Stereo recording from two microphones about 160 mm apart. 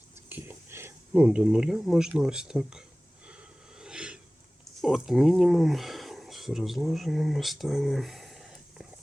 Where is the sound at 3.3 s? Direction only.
5° right (ahead or behind).